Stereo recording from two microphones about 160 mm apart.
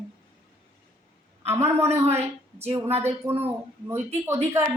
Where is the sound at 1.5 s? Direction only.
15° right (ahead or behind).